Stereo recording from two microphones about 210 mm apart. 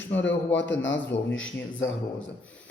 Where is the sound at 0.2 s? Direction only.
60° left (ahead or behind).